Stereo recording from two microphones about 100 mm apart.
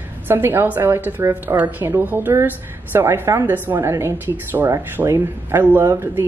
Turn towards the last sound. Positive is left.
turn(degrees=-25)  # may be behind; listen again after turning